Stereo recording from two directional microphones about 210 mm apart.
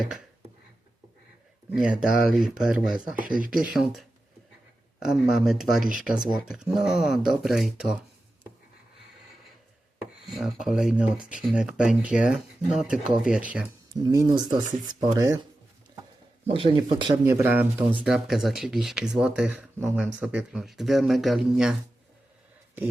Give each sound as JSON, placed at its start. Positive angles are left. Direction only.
{"t": 1.7, "sound": "speech", "side_deg": -5}
{"t": 3.2, "sound": "speech", "side_deg": -40}
{"t": 3.5, "sound": "speech", "side_deg": -5}
{"t": 10.2, "sound": "speech", "side_deg": 0}
{"t": 14.0, "sound": "speech", "side_deg": -20}
{"t": 16.5, "sound": "speech", "side_deg": -25}